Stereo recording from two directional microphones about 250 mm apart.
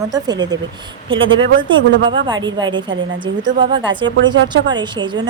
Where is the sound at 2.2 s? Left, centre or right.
Centre.